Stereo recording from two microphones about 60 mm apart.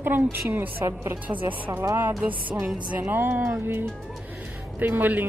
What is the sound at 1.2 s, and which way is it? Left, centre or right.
A woman's voice, right.